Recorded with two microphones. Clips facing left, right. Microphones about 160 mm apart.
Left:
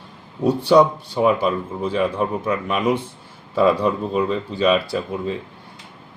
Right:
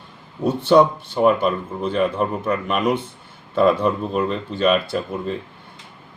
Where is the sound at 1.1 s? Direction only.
5° left (ahead or behind).